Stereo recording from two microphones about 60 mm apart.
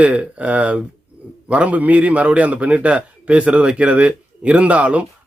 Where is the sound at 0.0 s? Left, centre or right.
Right.